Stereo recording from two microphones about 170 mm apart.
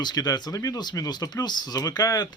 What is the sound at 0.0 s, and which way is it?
Speech, 25° left (ahead or behind).